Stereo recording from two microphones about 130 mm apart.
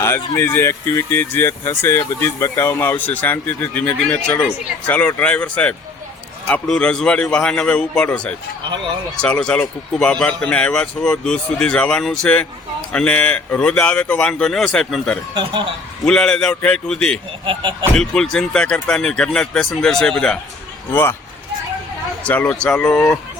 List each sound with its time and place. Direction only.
0.0 s speech: 20° left (ahead or behind)
17.4 s speech: 40° right (ahead or behind)
17.9 s speech: 5° left (ahead or behind)
20.9 s speech: 15° left (ahead or behind)
22.2 s speech: 10° left (ahead or behind)